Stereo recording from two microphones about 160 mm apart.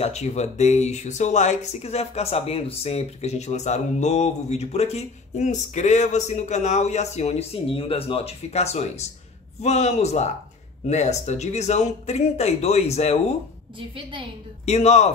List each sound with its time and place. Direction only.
0.0 s speech: 45° left (ahead or behind)
13.7 s a woman's voice: 30° right (ahead or behind)
14.7 s speech: 45° left (ahead or behind)